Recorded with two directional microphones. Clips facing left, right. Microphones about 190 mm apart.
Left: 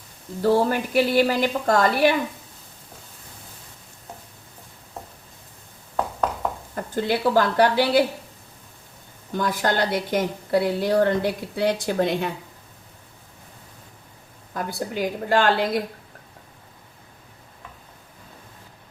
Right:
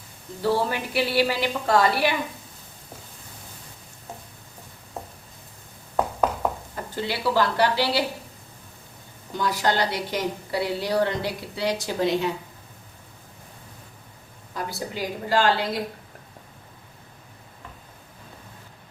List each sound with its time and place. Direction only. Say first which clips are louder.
0.4 s a woman's voice: left 4 dB; 45° left (ahead or behind)
6.0 s a sound: right 2 dB; 5° right (ahead or behind)
6.7 s a woman's voice: left 5 dB; 50° left (ahead or behind)
9.3 s a woman's voice: left 1 dB; 50° left (ahead or behind)
14.5 s a woman's voice: left 3 dB; 55° left (ahead or behind)